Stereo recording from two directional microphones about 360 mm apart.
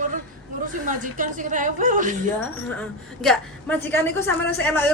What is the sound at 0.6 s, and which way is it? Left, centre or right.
Speech, right.